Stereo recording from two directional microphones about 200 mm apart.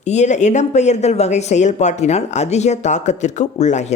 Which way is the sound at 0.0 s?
35° left (ahead or behind).